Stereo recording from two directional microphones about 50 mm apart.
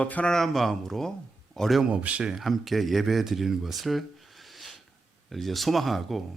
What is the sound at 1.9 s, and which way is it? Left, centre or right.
Speech, right.